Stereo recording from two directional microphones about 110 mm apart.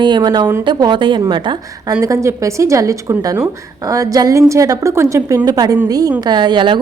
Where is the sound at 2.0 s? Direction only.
30° right (ahead or behind).